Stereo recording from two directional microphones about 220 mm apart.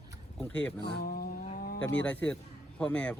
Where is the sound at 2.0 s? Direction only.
5° left (ahead or behind).